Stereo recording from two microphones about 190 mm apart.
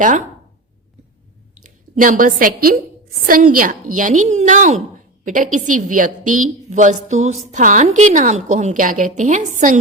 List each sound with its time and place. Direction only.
1.6 s a woman's voice: 45° right (ahead or behind)